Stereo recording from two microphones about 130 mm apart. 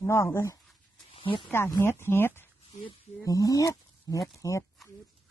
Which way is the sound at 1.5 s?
20° left (ahead or behind).